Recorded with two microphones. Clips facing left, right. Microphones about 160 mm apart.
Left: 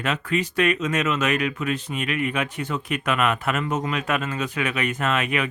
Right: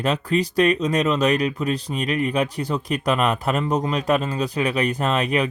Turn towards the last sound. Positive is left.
turn(degrees=-35)  # may be behind; listen again after turning